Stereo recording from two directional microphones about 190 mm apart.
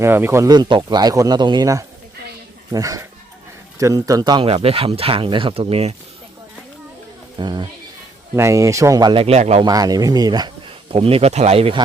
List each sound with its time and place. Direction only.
0.0 s speech: 15° right (ahead or behind); by 5.9 s 30° right (ahead or behind)
7.3 s speech: 25° right (ahead or behind)
9.6 s speech: 20° right (ahead or behind)